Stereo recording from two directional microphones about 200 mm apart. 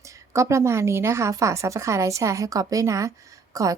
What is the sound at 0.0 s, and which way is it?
A woman's voice, 15° right (ahead or behind).